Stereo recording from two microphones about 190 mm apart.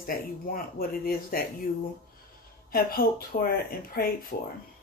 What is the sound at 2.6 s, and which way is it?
Speech, 50° left (ahead or behind).